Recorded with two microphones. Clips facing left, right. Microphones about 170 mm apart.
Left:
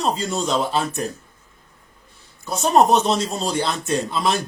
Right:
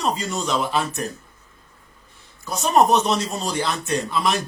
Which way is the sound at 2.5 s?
30° left (ahead or behind).